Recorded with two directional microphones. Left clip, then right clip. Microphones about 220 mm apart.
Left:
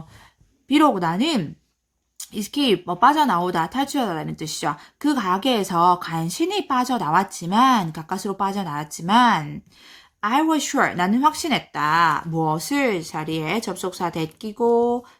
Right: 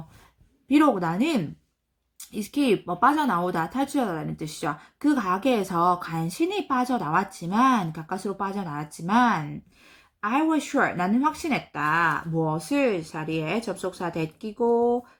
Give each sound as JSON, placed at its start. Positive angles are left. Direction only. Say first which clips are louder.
{"t": 0.7, "sound": "a woman's voice", "louder": "left 3 dB", "side_deg": 25}